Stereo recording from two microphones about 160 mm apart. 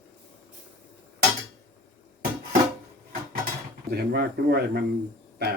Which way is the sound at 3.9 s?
85° right.